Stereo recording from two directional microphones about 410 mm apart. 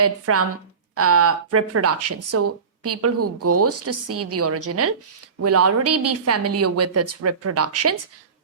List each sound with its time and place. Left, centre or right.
0.0 s speech: right